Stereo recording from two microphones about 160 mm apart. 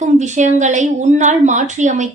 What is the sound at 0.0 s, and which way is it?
A woman's voice, 45° right (ahead or behind).